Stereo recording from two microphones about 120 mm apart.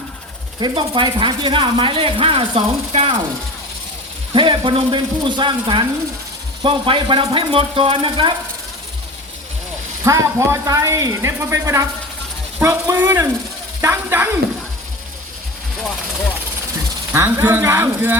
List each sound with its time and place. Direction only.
0.6 s speech: 40° right (ahead or behind); by 3.2 s 55° right (ahead or behind)
4.4 s speech: 45° right (ahead or behind)
10.0 s speech: 25° right (ahead or behind)
17.2 s speech: 20° right (ahead or behind)